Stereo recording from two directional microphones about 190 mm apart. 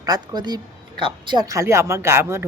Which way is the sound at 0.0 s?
20° right (ahead or behind).